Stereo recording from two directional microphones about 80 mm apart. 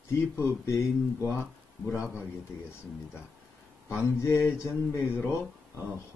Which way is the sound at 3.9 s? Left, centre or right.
Left.